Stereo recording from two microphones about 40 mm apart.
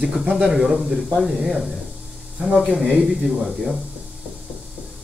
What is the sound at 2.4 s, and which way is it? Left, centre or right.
Speech, centre.